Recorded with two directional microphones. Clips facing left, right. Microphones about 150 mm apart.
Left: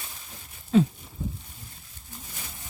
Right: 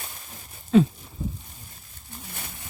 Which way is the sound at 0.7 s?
70° right (ahead or behind).